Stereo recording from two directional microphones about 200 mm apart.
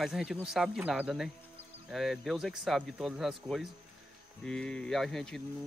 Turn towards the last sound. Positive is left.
turn(degrees=0)  # may be behind; listen again after turning